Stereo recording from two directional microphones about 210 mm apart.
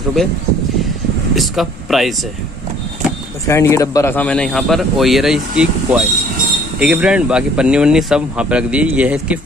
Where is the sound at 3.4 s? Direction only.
15° left (ahead or behind).